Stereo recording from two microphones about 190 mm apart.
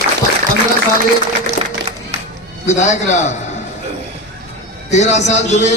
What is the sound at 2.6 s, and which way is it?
Speech, 40° left (ahead or behind).